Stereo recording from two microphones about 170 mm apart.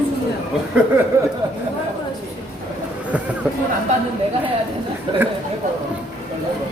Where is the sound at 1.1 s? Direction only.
20° right (ahead or behind).